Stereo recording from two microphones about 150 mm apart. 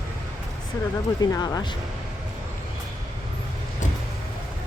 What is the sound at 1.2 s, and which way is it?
Speech, 25° left (ahead or behind).